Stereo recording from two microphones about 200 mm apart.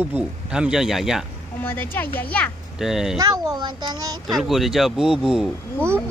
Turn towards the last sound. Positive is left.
turn(degrees=0)  # may be behind; listen again after turning